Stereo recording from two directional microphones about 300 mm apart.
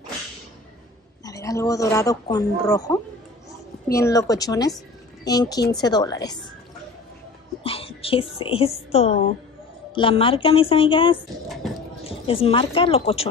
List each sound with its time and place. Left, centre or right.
1.2 s speech: centre
7.6 s a woman's voice: centre
11.4 s music: centre
12.0 s a woman's voice: centre